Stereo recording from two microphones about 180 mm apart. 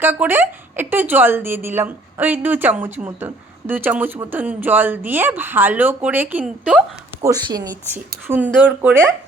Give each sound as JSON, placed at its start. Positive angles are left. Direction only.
{"t": 0.0, "sound": "speech", "side_deg": -10}
{"t": 7.3, "sound": "speech", "side_deg": -20}